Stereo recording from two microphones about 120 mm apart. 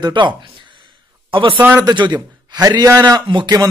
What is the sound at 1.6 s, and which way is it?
Speech, 15° right (ahead or behind).